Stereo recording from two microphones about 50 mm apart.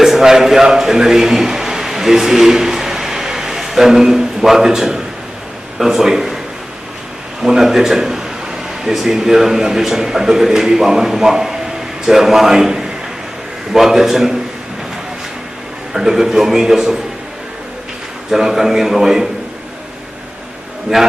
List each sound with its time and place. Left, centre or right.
0.0 s a man's voice: centre
7.4 s a man's voice: centre
15.9 s a man's voice: centre
18.3 s a man's voice: centre
20.9 s a man's voice: centre